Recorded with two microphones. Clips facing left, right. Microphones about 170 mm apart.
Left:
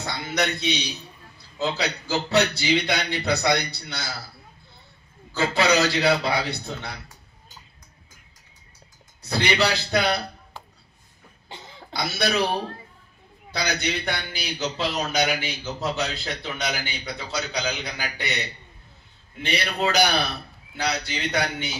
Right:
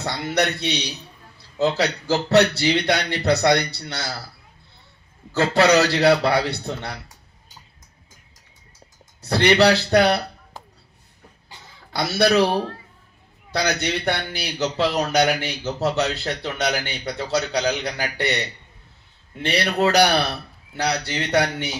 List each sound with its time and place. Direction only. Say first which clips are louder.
0.0 s a man's voice: right 4 dB; 65° right (ahead or behind)
5.3 s speech: right 5 dB; 65° right (ahead or behind)
9.3 s speech: right 7 dB; 65° right (ahead or behind)
11.4 s cough: left 7 dB; 25° left (ahead or behind)
11.9 s speech: right 7 dB; 65° right (ahead or behind)
13.5 s speech: right 4 dB; 60° right (ahead or behind)
19.5 s speech: right 5 dB; 65° right (ahead or behind)